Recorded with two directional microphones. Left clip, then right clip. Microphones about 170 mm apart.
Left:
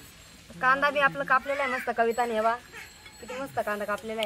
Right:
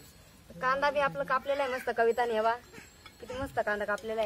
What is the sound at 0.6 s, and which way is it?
Speech, 45° right (ahead or behind).